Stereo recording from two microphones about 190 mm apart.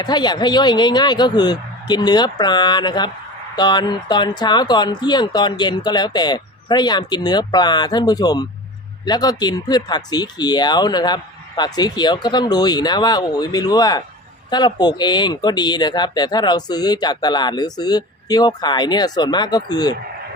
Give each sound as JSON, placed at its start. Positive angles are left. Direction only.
{"t": 0.0, "sound": "speech", "side_deg": 20}